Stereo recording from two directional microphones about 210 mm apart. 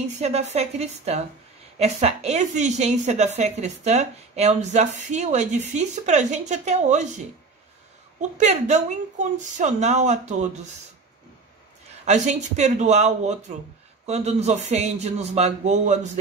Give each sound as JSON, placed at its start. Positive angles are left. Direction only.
{"t": 0.2, "sound": "a woman's voice", "side_deg": -30}
{"t": 8.2, "sound": "a woman's voice", "side_deg": -35}
{"t": 12.0, "sound": "a woman's voice", "side_deg": -35}